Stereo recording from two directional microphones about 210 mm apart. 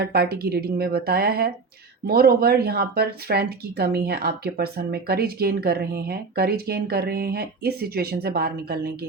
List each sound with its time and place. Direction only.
0.0 s speech: 50° right (ahead or behind)